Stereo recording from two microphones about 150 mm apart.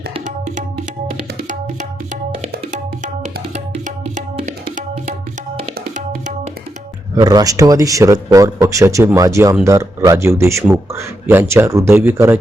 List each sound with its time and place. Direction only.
3.5 s music: 60° right (ahead or behind)
4.6 s tabla: 60° right (ahead or behind)
7.3 s a man's voice: 25° right (ahead or behind)